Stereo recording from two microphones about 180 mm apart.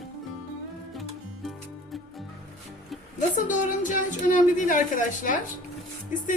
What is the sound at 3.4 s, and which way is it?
Speech, 45° left (ahead or behind).